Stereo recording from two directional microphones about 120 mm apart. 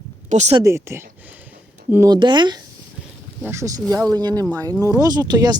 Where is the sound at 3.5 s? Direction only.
25° right (ahead or behind).